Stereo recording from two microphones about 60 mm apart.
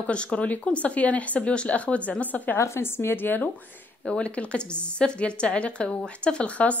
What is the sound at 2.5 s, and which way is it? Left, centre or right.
Speech, left.